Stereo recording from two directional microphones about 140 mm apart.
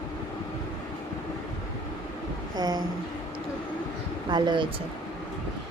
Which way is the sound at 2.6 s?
30° right (ahead or behind).